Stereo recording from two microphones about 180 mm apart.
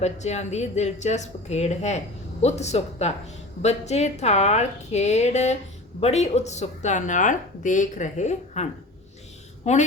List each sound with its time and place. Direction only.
0.0 s speech: 40° left (ahead or behind)